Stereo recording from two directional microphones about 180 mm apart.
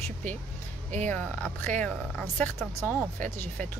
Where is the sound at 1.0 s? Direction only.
10° left (ahead or behind).